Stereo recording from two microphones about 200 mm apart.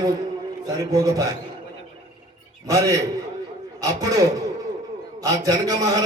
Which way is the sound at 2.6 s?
15° right (ahead or behind).